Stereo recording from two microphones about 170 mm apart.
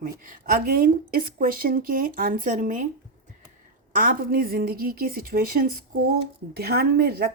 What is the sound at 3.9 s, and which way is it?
Speech, 60° right (ahead or behind).